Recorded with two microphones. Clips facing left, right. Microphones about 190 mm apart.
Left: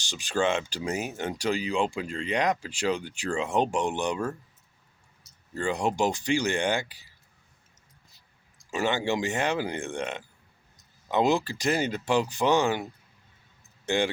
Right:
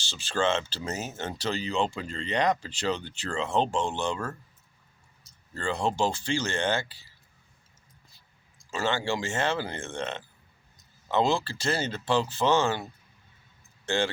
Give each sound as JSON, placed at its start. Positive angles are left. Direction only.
{"t": 0.0, "sound": "speech", "side_deg": 15}
{"t": 5.5, "sound": "speech", "side_deg": 15}
{"t": 8.7, "sound": "speech", "side_deg": 15}